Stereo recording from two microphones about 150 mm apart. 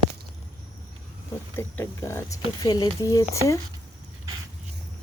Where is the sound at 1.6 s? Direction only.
15° left (ahead or behind).